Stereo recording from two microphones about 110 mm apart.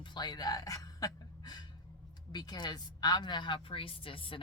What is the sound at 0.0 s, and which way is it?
A woman's voice, 40° left (ahead or behind).